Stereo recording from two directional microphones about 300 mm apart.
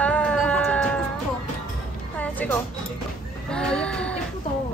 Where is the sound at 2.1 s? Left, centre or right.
Centre.